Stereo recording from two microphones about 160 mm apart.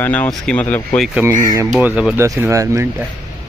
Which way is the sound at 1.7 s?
5° right (ahead or behind).